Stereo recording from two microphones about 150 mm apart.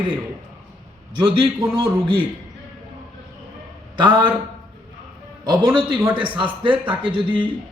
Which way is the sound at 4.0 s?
30° right (ahead or behind).